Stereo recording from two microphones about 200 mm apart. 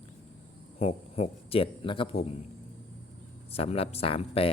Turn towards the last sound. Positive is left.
turn(degrees=30)  # may be behind; listen again after turning